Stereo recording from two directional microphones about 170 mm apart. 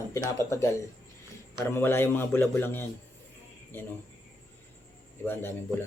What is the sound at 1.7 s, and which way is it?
A man's voice, 15° left (ahead or behind).